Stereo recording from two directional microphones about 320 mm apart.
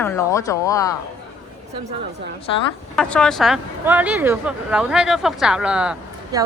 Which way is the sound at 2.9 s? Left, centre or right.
Centre.